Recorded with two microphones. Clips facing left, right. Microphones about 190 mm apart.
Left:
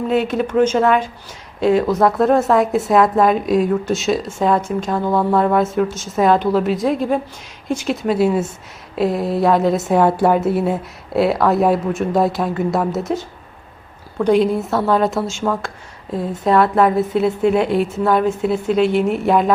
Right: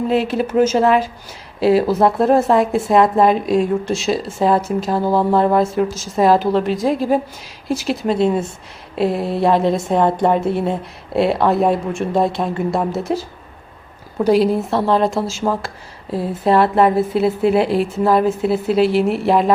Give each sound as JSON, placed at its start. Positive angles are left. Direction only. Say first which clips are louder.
{"t": 0.1, "sound": "a woman's voice", "louder": "left 2 dB", "side_deg": 0}
{"t": 1.8, "sound": "speech", "louder": "even", "side_deg": -30}
{"t": 2.2, "sound": "a woman's voice", "louder": "even", "side_deg": 0}
{"t": 14.3, "sound": "a woman's voice", "louder": "even", "side_deg": -5}
{"t": 16.6, "sound": "a woman's voice", "louder": "even", "side_deg": 0}